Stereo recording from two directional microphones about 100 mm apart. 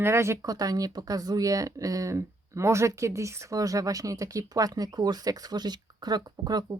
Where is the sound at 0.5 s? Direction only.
40° right (ahead or behind).